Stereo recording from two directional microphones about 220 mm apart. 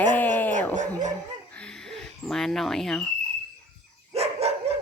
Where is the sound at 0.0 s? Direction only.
5° left (ahead or behind).